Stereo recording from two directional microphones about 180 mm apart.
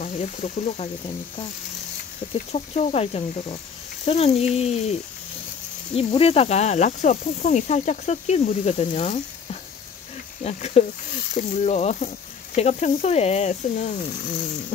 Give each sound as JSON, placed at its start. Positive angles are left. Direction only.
{"t": 0.0, "sound": "speech", "side_deg": 35}
{"t": 2.5, "sound": "speech", "side_deg": 35}
{"t": 5.9, "sound": "speech", "side_deg": 35}